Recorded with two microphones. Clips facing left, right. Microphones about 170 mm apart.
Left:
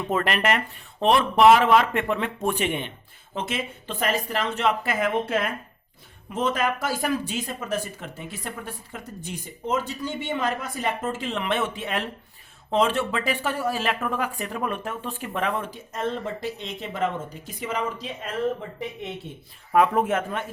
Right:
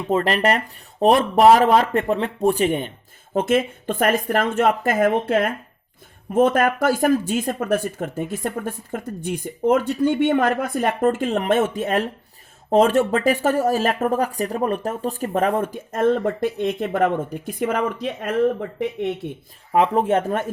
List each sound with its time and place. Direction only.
0.1 s speech: 30° right (ahead or behind); by 19.1 s 65° right (ahead or behind)
19.7 s speech: 30° right (ahead or behind)